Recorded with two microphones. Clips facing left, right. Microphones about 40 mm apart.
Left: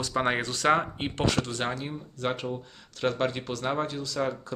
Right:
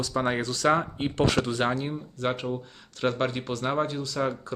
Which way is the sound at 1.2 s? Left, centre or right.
Centre.